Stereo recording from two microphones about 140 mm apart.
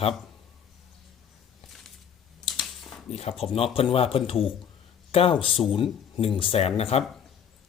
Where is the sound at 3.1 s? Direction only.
50° left (ahead or behind).